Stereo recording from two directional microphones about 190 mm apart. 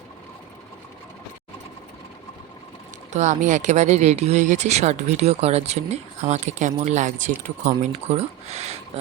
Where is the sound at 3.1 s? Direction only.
40° right (ahead or behind).